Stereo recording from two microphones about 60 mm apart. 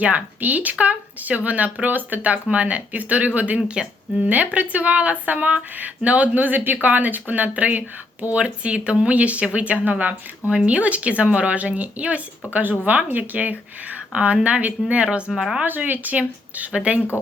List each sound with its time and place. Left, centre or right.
0.0 s speech: right
15.4 s speech: centre
15.6 s speech: right